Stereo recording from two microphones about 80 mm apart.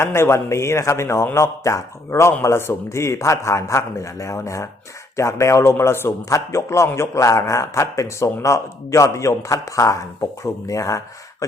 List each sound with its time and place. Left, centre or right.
0.0 s a man's voice: left